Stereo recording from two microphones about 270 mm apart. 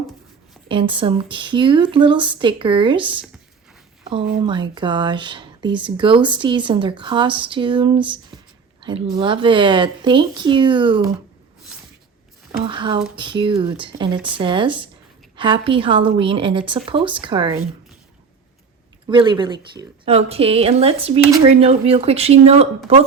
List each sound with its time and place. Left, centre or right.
0.7 s a woman's voice: centre
4.4 s speech: centre
12.5 s a sound: centre
13.1 s a woman's voice: centre
19.0 s a woman's voice: centre